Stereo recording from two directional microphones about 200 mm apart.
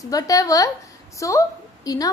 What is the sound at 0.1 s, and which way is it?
Speech, 15° left (ahead or behind).